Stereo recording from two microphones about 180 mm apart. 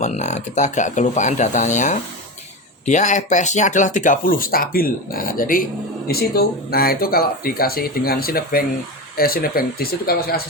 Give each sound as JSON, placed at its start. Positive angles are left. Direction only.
{"t": 0.0, "sound": "speech", "side_deg": 40}